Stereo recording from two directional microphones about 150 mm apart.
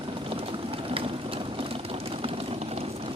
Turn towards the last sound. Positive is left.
turn(degrees=-40)  # may be behind; listen again after turning